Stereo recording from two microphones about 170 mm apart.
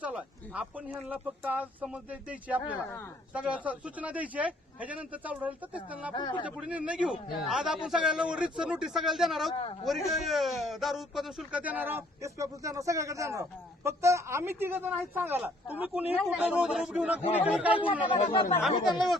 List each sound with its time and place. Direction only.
0.0 s speech: 5° right (ahead or behind)
6.1 s speech: 25° left (ahead or behind)
6.4 s a man's voice: 5° right (ahead or behind)